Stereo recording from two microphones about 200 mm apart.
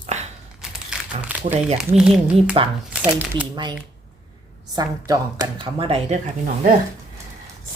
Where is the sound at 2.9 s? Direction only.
5° right (ahead or behind).